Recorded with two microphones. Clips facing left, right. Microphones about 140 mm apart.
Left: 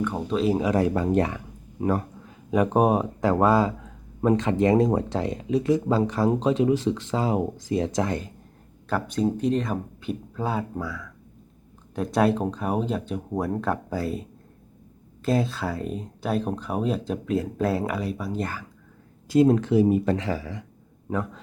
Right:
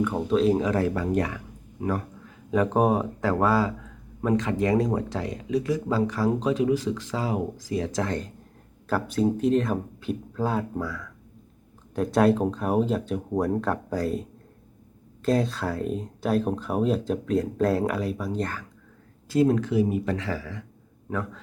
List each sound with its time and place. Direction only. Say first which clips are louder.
0.0 s speech: right 2 dB; centre (ahead or behind); by 1.9 s 30° left (ahead or behind)
2.5 s speech: left 1 dB; 15° left (ahead or behind)
8.9 s speech: right 1 dB; centre (ahead or behind)
19.3 s speech: left 3 dB; 25° left (ahead or behind)
20.2 s speech: left 2 dB; 20° left (ahead or behind)